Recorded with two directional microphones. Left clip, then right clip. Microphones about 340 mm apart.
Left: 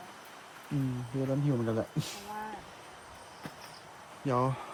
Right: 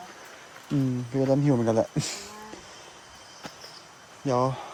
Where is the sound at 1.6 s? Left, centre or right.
Centre.